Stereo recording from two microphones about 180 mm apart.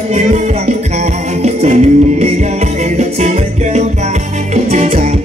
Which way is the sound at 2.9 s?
40° right (ahead or behind).